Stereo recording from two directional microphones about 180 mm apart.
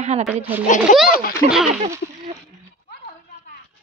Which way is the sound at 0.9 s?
45° left (ahead or behind).